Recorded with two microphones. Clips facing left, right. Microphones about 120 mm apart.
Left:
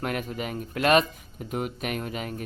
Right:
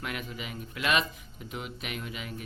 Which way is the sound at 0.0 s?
45° left (ahead or behind).